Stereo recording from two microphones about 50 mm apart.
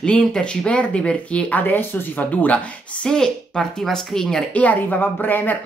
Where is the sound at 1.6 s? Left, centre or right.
Left.